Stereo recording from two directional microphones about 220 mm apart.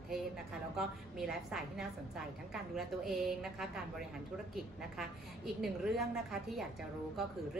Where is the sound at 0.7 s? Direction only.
Centre (ahead or behind).